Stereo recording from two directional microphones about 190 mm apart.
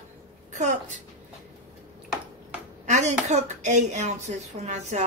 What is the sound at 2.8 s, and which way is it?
Speech, 40° right (ahead or behind).